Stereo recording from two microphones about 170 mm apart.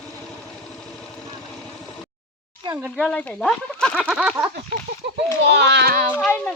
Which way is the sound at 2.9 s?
5° left (ahead or behind).